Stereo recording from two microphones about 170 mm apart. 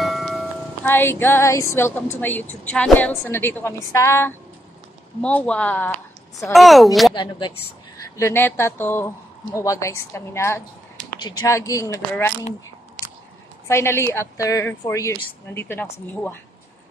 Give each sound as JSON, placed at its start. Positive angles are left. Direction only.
{"t": 0.0, "sound": "music", "side_deg": 0}
{"t": 0.8, "sound": "speech", "side_deg": 15}
{"t": 7.2, "sound": "speech", "side_deg": 25}
{"t": 8.2, "sound": "speech", "side_deg": 15}
{"t": 13.7, "sound": "speech", "side_deg": 15}